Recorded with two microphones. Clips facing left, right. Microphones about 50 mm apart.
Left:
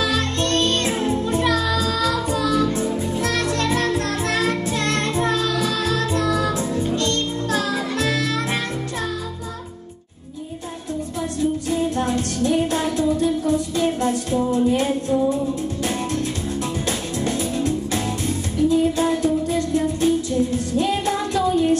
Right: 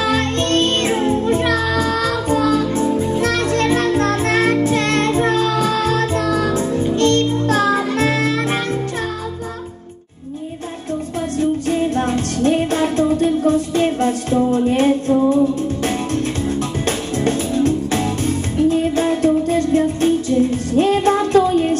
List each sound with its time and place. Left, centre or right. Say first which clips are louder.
0.0 s music: right 4 dB; right
11.7 s music: right 3 dB; right
16.8 s music: right 5 dB; right